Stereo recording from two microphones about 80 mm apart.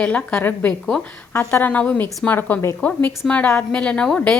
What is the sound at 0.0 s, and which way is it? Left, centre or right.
A woman's voice, centre.